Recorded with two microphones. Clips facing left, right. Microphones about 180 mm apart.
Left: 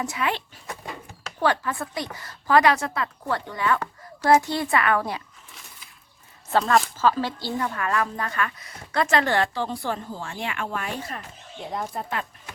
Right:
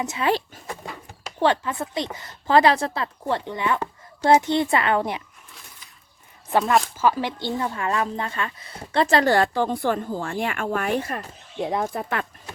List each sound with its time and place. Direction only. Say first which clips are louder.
0.0 s a woman's voice: right 1 dB; 20° right (ahead or behind)
0.3 s speech: right 6 dB; 35° right (ahead or behind)
1.4 s a woman's voice: right 2 dB; 25° right (ahead or behind)
6.5 s a woman's voice: right 1 dB; 15° right (ahead or behind); by 11.2 s 60° right (ahead or behind)
11.6 s speech: right 6 dB; 80° right